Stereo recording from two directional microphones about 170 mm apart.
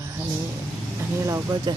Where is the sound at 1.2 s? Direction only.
20° right (ahead or behind).